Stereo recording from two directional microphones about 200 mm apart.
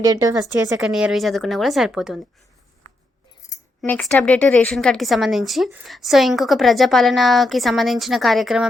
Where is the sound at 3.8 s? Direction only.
5° left (ahead or behind).